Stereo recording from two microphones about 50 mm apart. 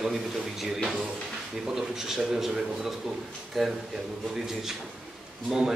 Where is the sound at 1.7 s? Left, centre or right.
Centre.